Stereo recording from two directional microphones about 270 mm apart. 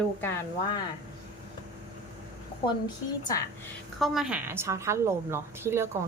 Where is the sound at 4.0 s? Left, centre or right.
Centre.